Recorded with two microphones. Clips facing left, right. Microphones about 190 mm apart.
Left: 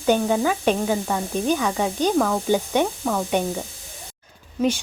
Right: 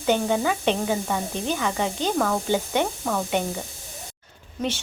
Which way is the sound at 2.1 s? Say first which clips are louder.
Left 1 dB; centre (ahead or behind).